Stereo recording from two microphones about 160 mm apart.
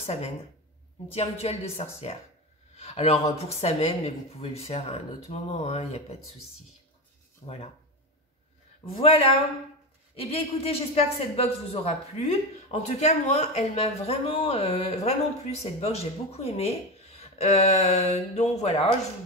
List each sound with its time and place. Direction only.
0.0 s speech: 40° left (ahead or behind)
7.4 s speech: 45° left (ahead or behind)
8.9 s speech: 40° left (ahead or behind)